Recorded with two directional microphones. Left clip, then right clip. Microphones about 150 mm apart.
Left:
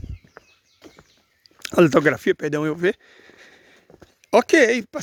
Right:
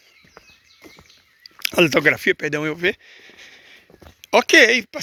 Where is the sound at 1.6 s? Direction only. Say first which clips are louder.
Even; 50° left (ahead or behind).